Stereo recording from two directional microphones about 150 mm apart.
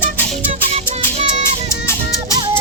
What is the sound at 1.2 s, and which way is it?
Music, 50° right (ahead or behind).